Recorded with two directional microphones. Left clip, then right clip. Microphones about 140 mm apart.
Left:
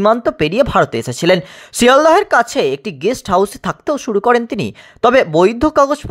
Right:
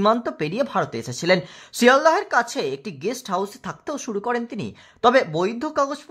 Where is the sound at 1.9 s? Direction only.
50° left (ahead or behind).